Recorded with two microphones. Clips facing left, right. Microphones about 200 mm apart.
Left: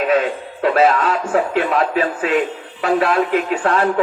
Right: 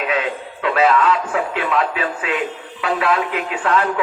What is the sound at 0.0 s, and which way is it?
A man's voice, 45° left (ahead or behind).